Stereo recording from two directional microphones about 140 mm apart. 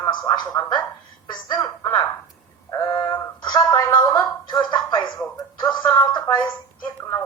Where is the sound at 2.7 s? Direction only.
25° left (ahead or behind).